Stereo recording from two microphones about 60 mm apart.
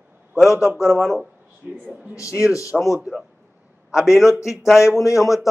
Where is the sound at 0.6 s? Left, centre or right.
Right.